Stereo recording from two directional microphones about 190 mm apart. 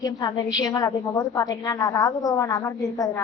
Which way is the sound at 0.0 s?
20° left (ahead or behind).